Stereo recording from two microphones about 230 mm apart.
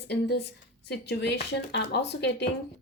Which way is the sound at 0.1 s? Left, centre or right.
Left.